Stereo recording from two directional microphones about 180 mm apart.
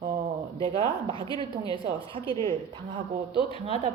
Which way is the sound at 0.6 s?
30° right (ahead or behind).